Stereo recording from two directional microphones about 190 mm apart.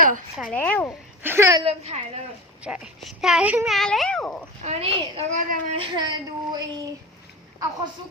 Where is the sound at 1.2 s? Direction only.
15° right (ahead or behind).